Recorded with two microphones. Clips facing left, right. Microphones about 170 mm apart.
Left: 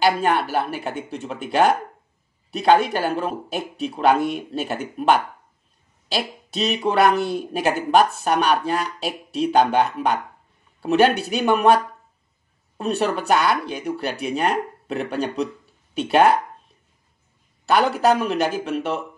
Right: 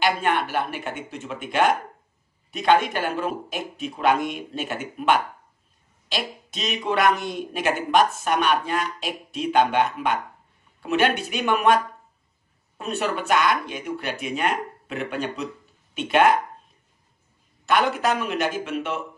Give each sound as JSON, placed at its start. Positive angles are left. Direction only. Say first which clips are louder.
{"t": 0.0, "sound": "speech", "louder": "left 3 dB", "side_deg": 35}
{"t": 17.6, "sound": "speech", "louder": "left 4 dB", "side_deg": 35}